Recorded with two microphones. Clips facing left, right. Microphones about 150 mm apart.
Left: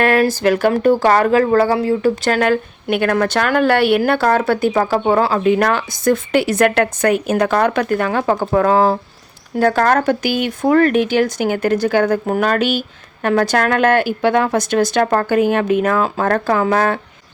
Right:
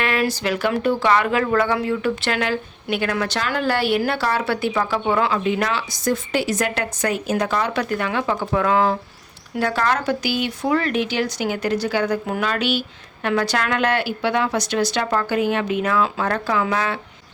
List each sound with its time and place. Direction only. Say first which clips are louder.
0.0 s speech: left 8 dB; 45° left (ahead or behind)
9.6 s speech: left 7 dB; 45° left (ahead or behind)